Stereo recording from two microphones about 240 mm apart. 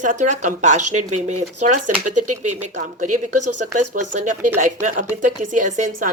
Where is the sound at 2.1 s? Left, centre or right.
Right.